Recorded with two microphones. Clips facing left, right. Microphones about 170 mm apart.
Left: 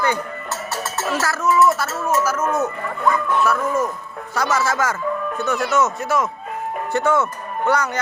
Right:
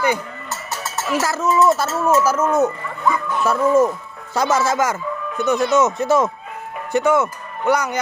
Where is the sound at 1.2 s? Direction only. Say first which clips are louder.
Even; 20° right (ahead or behind).